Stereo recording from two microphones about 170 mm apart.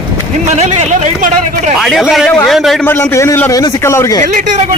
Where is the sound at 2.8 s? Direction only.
15° left (ahead or behind).